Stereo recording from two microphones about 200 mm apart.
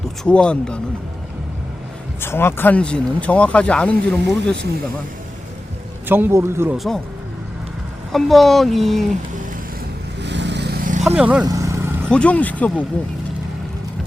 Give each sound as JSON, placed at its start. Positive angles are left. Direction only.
{"t": 0.3, "sound": "speech", "side_deg": 5}
{"t": 2.2, "sound": "speech", "side_deg": 10}
{"t": 6.1, "sound": "a man's voice", "side_deg": -10}
{"t": 6.7, "sound": "speech", "side_deg": 0}
{"t": 8.1, "sound": "speech", "side_deg": 0}
{"t": 10.2, "sound": "vehicle", "side_deg": -60}
{"t": 11.0, "sound": "speech", "side_deg": -5}
{"t": 11.4, "sound": "vehicle", "side_deg": -15}
{"t": 12.0, "sound": "speech", "side_deg": 5}